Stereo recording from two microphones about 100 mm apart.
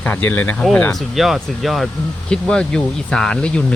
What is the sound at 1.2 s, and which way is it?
Speech, centre (ahead or behind).